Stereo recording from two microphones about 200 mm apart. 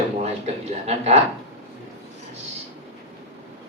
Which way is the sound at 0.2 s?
35° right (ahead or behind).